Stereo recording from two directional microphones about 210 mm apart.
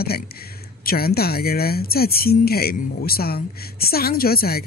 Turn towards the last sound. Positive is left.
turn(degrees=45)  # may be behind; listen again after turning